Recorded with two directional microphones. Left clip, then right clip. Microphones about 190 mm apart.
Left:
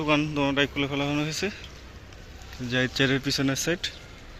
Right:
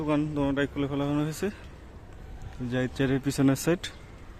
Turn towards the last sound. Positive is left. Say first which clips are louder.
# even
turn(degrees=-25)  # may be behind; listen again after turning